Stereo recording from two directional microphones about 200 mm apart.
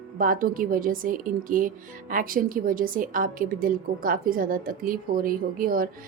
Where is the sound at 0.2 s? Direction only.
45° right (ahead or behind).